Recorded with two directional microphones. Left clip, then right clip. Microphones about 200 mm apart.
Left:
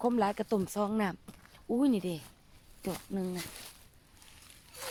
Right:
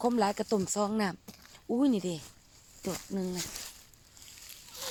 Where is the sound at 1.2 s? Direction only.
25° right (ahead or behind).